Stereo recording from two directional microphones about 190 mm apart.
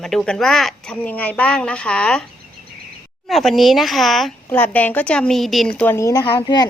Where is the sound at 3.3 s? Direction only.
Centre (ahead or behind); by 6.7 s 20° left (ahead or behind).